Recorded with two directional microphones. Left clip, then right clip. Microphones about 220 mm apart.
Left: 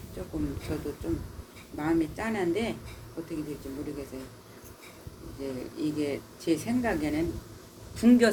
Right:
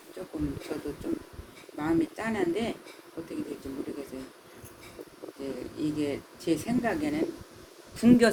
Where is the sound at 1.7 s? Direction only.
25° right (ahead or behind).